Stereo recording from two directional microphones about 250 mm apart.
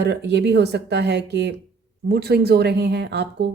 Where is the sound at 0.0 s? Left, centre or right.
Right.